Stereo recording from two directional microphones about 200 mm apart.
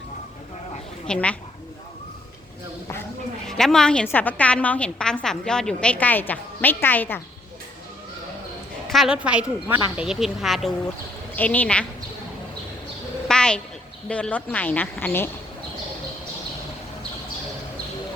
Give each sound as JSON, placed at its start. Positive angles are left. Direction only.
{"t": 1.0, "sound": "a woman's voice", "side_deg": 5}
{"t": 3.4, "sound": "a woman's voice", "side_deg": 5}
{"t": 8.9, "sound": "a woman's voice", "side_deg": 0}
{"t": 13.2, "sound": "a sound", "side_deg": 5}
{"t": 14.1, "sound": "a woman's voice", "side_deg": 5}